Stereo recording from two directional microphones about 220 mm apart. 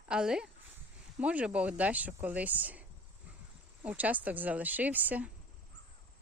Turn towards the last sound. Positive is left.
turn(degrees=-5)  # may be behind; listen again after turning